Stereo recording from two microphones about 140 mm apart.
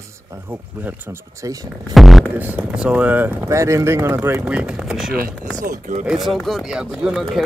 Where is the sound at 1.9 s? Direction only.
Centre (ahead or behind).